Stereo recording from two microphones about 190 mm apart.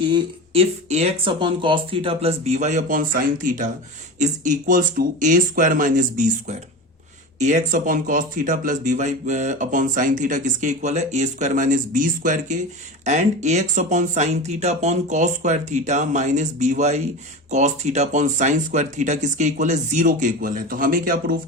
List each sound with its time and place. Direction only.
0.1 s speech: 30° right (ahead or behind); by 21.3 s 45° right (ahead or behind)